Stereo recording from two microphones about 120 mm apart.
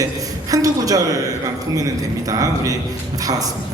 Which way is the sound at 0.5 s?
30° right (ahead or behind).